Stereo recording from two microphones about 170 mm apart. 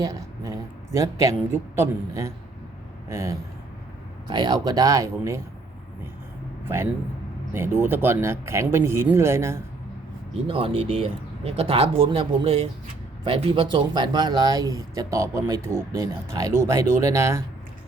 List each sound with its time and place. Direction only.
0.0 s speech: 20° right (ahead or behind)
7.5 s speech: 15° right (ahead or behind)
10.4 s speech: 30° right (ahead or behind); by 17.4 s 15° right (ahead or behind)